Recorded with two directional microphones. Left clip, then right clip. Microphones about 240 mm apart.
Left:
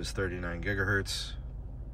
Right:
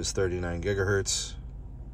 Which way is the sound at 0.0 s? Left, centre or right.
Centre.